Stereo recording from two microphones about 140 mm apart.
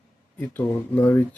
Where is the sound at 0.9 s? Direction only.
15° left (ahead or behind).